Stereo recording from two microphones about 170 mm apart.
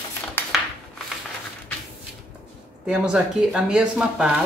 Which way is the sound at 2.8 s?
5° right (ahead or behind).